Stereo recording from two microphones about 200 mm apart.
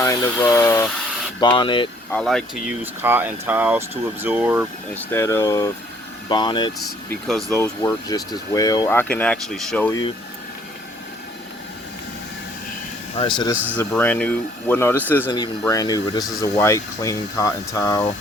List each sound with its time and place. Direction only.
0.0 s speech: 15° left (ahead or behind)
2.0 s speech: 5° left (ahead or behind)
2.8 s speech: 10° right (ahead or behind)
5.1 s speech: 15° left (ahead or behind)
7.1 s speech: centre (ahead or behind)
7.6 s speech: 15° left (ahead or behind)
13.1 s speech: 25° left (ahead or behind)
13.7 s speech: 10° left (ahead or behind)